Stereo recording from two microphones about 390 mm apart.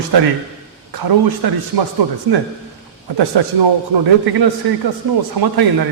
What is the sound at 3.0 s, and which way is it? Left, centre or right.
A man's voice, right.